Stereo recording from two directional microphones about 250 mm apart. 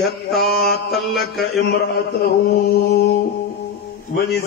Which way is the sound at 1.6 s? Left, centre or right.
Left.